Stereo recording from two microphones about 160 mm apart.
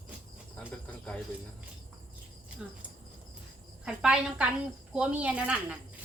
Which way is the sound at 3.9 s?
5° right (ahead or behind).